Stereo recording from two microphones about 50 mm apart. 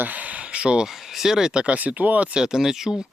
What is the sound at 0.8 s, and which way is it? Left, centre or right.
Speech, centre.